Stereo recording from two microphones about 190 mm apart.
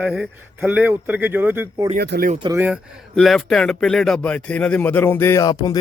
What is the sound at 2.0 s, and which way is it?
Speech, 55° right (ahead or behind).